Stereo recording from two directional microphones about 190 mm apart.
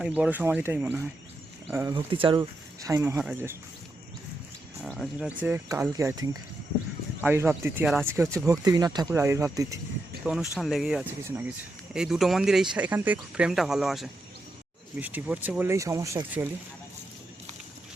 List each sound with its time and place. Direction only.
0.0 s speech: 5° right (ahead or behind)
4.8 s speech: 5° left (ahead or behind)
5.5 s speech: 15° right (ahead or behind)
10.2 s speech: centre (ahead or behind)